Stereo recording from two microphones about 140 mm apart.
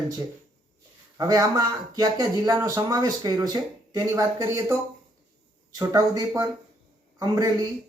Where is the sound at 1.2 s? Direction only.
25° right (ahead or behind).